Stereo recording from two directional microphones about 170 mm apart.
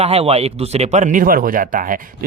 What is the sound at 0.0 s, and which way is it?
Speech, 35° right (ahead or behind).